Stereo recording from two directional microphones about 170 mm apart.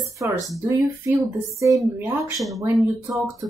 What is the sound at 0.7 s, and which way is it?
Speech, 15° right (ahead or behind).